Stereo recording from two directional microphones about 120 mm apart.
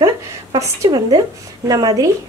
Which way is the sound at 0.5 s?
25° right (ahead or behind).